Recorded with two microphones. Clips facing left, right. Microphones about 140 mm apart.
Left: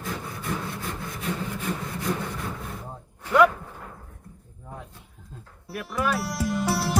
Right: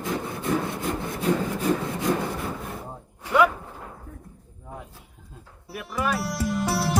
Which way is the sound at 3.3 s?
5° right (ahead or behind).